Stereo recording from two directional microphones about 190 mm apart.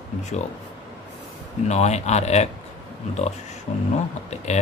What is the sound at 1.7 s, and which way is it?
Speech, 35° left (ahead or behind).